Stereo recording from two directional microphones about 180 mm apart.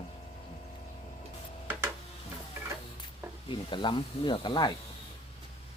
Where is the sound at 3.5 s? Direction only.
25° left (ahead or behind).